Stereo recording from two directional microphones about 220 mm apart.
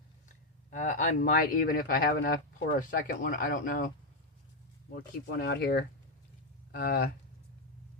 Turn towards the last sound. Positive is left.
turn(degrees=40)  # may be behind; listen again after turning